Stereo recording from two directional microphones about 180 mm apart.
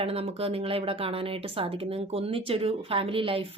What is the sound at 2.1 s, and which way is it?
Speech, 30° right (ahead or behind).